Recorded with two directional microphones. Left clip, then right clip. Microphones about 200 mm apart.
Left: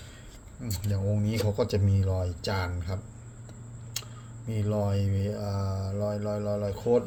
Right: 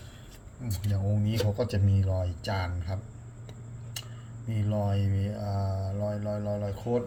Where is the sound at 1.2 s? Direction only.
30° left (ahead or behind).